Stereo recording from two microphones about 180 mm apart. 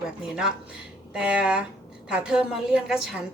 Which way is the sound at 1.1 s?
5° right (ahead or behind).